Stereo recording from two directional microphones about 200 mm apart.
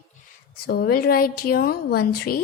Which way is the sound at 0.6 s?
50° left (ahead or behind).